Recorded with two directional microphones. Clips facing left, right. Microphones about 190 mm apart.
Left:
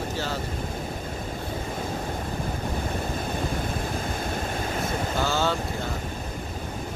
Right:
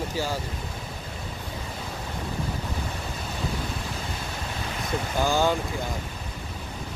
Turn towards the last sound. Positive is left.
turn(degrees=-15)  # may be behind; listen again after turning